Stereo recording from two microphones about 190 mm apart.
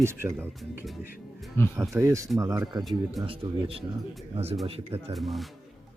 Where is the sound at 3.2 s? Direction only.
30° right (ahead or behind).